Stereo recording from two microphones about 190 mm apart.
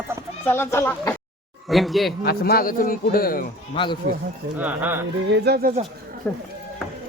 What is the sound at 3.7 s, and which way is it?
Speech, 25° left (ahead or behind).